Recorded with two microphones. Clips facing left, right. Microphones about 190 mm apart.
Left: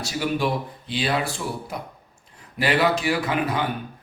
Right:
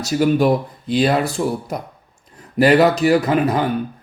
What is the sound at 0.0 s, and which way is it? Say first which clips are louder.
A man's voice: right 9 dB; 45° right (ahead or behind).